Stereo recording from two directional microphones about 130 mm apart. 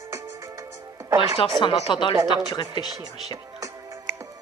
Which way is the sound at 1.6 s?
40° left (ahead or behind).